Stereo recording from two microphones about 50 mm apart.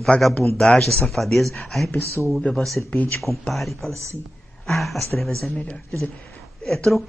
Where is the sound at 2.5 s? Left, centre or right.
Centre.